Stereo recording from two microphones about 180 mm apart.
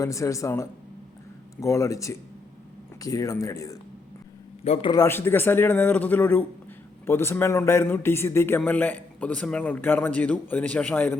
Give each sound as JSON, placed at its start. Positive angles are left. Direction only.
{"t": 0.0, "sound": "a man's voice", "side_deg": 15}
{"t": 4.8, "sound": "a man's voice", "side_deg": 20}